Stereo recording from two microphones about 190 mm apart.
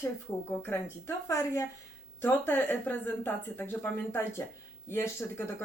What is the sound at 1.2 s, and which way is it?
A woman's voice, 15° left (ahead or behind).